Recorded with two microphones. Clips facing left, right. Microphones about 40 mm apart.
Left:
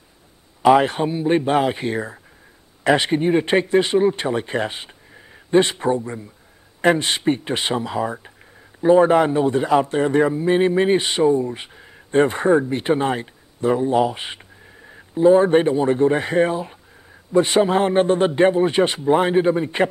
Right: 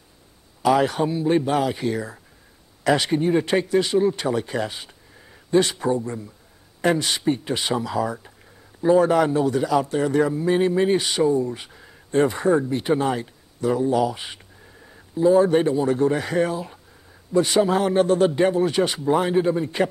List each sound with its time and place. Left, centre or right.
0.6 s a man's voice: left
12.1 s a man's voice: left